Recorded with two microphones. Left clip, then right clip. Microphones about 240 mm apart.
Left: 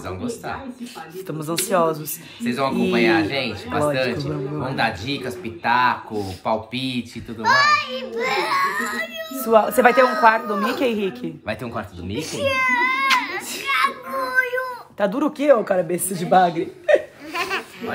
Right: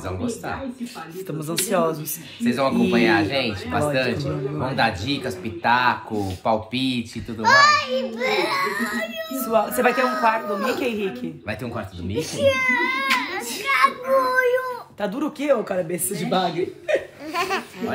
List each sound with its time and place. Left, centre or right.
1.7 s speech: centre
2.4 s a man's voice: centre
7.4 s a child's voice: right
8.1 s a man's voice: centre
9.5 s speech: left
9.9 s a man's voice: centre
10.2 s speech: left
11.4 s speech: centre
12.2 s a child's voice: centre
13.7 s child singing: right
14.3 s a sound: centre
15.0 s speech: left
17.3 s a sound: centre